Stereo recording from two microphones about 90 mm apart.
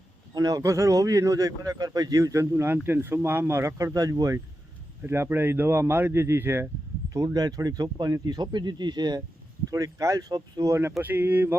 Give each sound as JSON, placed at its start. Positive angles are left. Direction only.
{"t": 0.3, "sound": "a man's voice", "side_deg": -40}
{"t": 3.9, "sound": "a man's voice", "side_deg": -40}
{"t": 5.0, "sound": "speech", "side_deg": -25}
{"t": 7.1, "sound": "speech", "side_deg": -40}
{"t": 9.6, "sound": "speech", "side_deg": -40}
{"t": 11.0, "sound": "speech", "side_deg": -25}